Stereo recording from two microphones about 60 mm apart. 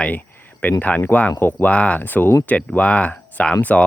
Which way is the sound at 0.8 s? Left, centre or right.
Left.